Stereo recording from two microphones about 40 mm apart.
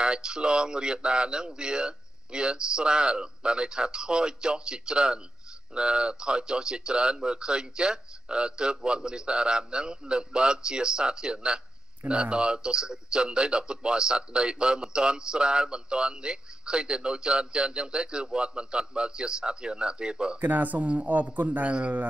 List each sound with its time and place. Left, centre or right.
0.0 s a man's voice: right
20.3 s speech: right